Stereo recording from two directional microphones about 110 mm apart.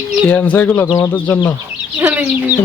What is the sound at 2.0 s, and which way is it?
Speech, 15° right (ahead or behind).